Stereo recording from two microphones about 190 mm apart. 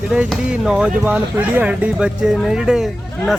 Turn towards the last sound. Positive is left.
turn(degrees=0)  # may be behind; listen again after turning